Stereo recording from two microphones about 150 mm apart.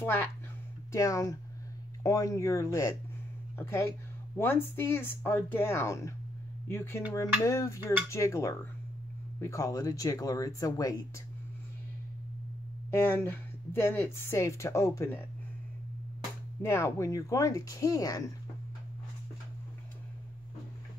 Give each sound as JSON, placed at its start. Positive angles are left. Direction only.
{"t": 0.0, "sound": "speech", "side_deg": 15}
{"t": 12.9, "sound": "speech", "side_deg": 15}
{"t": 16.6, "sound": "speech", "side_deg": 20}